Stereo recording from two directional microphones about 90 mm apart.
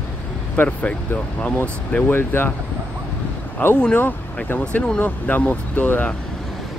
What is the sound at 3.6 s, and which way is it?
Speech, 20° left (ahead or behind).